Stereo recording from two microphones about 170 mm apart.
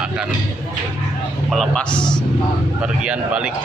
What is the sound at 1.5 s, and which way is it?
Speech, 5° left (ahead or behind).